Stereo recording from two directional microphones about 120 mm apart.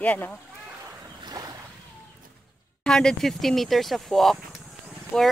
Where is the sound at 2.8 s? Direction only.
5° left (ahead or behind).